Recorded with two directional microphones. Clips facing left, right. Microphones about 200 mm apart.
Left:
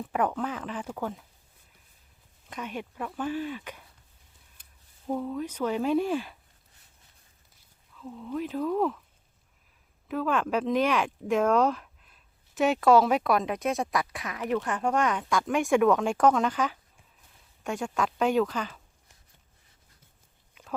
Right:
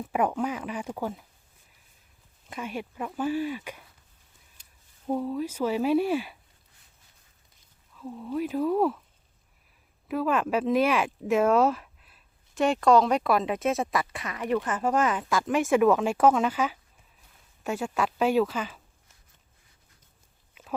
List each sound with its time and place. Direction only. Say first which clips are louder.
0.1 s speech: right 2 dB; 10° right (ahead or behind)
2.5 s speech: right 2 dB; 10° right (ahead or behind)
4.6 s a sound: even; 55° left (ahead or behind)
5.0 s speech: right 2 dB; 10° right (ahead or behind)
7.9 s speech: right 2 dB; 15° right (ahead or behind)
10.1 s speech: right 2 dB; 5° right (ahead or behind)